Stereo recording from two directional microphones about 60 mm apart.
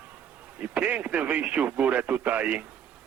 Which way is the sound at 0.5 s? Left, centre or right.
Right.